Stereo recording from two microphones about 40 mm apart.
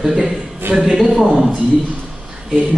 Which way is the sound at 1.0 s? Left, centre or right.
Centre.